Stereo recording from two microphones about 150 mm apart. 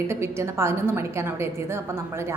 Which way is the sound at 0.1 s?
15° right (ahead or behind).